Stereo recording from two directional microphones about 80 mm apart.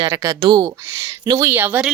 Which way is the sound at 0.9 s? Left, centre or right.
Right.